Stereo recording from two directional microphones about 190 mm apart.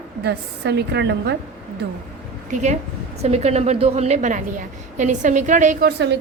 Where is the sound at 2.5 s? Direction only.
40° right (ahead or behind).